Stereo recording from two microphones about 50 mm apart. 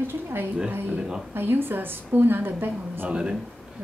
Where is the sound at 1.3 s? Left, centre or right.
Right.